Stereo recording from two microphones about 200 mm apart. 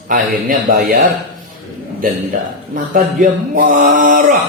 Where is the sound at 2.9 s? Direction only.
45° right (ahead or behind).